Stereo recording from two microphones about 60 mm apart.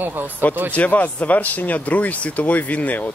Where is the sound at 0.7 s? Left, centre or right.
Left.